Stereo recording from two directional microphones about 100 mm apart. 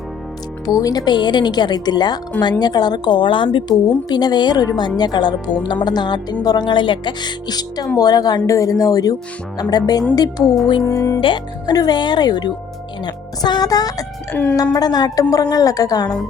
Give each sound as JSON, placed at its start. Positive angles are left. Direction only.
{"t": 0.6, "sound": "a woman's voice", "side_deg": 35}
{"t": 11.2, "sound": "speech", "side_deg": 55}
{"t": 11.7, "sound": "a woman's voice", "side_deg": 45}